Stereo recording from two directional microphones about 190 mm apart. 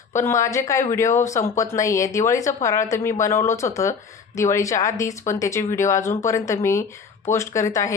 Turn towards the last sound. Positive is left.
turn(degrees=15)  # may be behind; listen again after turning